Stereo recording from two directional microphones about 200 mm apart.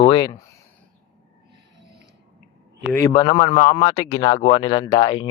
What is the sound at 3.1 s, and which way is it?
Speech, 25° left (ahead or behind).